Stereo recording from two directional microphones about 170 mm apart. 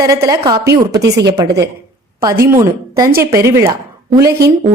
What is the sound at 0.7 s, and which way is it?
Speech, 80° right.